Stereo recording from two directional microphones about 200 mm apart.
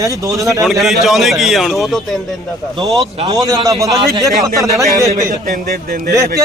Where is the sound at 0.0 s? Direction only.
15° right (ahead or behind).